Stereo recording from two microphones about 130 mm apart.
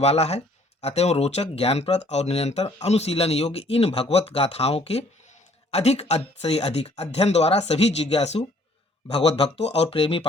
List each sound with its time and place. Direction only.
0.0 s speech: 50° left (ahead or behind)